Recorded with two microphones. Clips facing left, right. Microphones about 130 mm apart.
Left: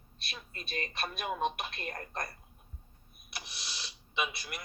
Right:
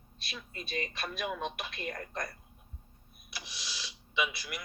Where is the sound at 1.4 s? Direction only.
45° left (ahead or behind).